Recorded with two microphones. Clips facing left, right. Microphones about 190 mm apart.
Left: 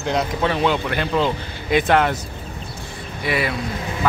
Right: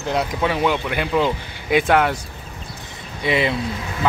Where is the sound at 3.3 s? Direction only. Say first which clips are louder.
Right 3 dB; 20° right (ahead or behind).